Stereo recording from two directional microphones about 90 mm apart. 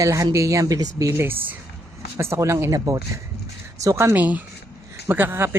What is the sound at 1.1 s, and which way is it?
Speech, 25° right (ahead or behind).